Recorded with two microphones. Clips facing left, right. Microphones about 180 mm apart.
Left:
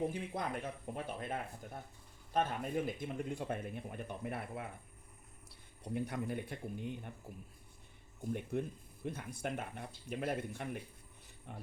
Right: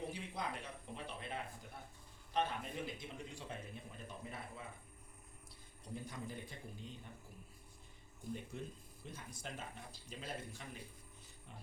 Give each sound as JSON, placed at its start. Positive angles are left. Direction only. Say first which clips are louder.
{"t": 0.1, "sound": "a man's voice", "louder": "left 5 dB", "side_deg": 50}
{"t": 8.3, "sound": "a man's voice", "louder": "left 8 dB", "side_deg": 60}